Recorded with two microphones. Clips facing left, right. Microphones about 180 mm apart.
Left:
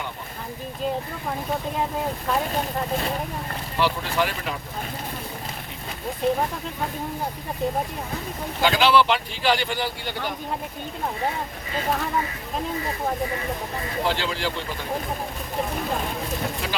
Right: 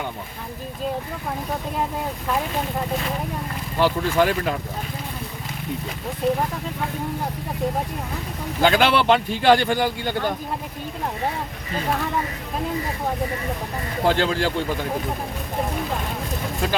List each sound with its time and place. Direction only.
3.8 s speech: 45° right (ahead or behind)
8.6 s speech: 50° right (ahead or behind)
14.0 s speech: 50° right (ahead or behind)